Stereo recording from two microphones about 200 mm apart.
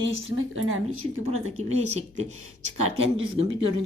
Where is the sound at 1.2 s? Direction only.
35° right (ahead or behind).